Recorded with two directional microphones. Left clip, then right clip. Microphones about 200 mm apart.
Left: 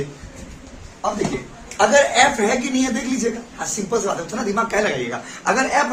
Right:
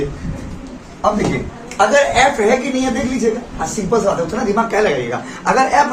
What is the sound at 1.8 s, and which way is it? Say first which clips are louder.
A woman's voice: right 2 dB; 30° left (ahead or behind).